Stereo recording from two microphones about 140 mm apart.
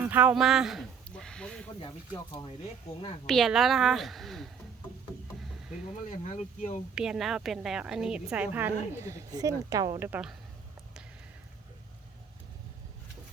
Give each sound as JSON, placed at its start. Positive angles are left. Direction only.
{"t": 0.1, "sound": "speech", "side_deg": -10}
{"t": 3.2, "sound": "a woman's voice", "side_deg": 0}
{"t": 5.9, "sound": "speech", "side_deg": 65}
{"t": 6.9, "sound": "a woman's voice", "side_deg": -5}
{"t": 10.1, "sound": "a woman's voice", "side_deg": -5}